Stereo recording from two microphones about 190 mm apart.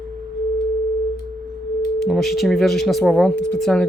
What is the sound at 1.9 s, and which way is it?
Speech, centre (ahead or behind).